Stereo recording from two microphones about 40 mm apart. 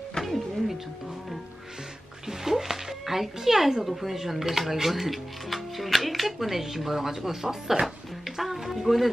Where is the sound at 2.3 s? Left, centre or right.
Centre.